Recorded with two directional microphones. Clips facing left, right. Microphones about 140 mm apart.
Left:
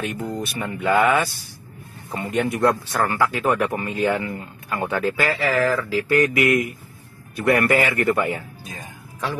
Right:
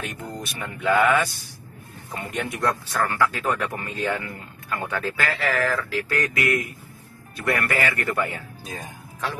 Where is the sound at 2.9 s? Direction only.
20° left (ahead or behind).